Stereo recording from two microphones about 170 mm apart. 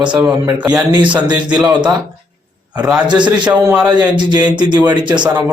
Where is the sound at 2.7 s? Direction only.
5° right (ahead or behind).